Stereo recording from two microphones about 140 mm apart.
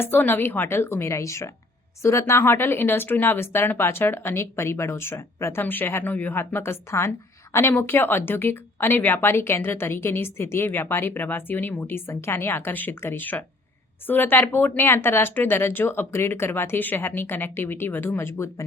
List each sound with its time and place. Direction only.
0.0 s a woman's voice: 15° left (ahead or behind)